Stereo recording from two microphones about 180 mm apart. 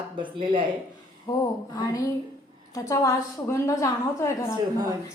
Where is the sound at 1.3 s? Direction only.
20° left (ahead or behind).